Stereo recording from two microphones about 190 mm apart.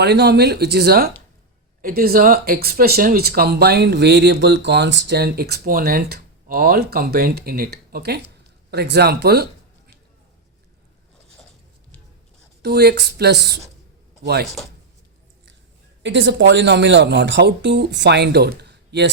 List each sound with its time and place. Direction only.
0.0 s speech: 60° right (ahead or behind)
12.6 s speech: 55° right (ahead or behind)
16.0 s speech: 75° right (ahead or behind)